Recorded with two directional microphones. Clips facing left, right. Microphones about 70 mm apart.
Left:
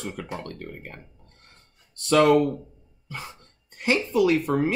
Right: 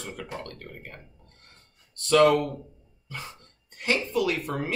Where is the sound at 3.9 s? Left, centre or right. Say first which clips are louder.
Left 5 dB; centre.